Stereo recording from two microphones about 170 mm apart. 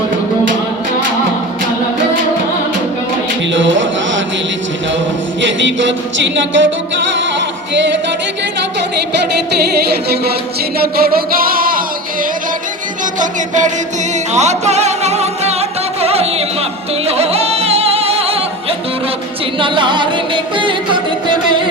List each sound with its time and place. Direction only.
3.5 s music: 90° right
5.4 s music: 90° right
7.7 s singing: 90° right
9.8 s music: 70° right (ahead or behind)
13.1 s music: 45° right (ahead or behind)
19.5 s music: 30° right (ahead or behind)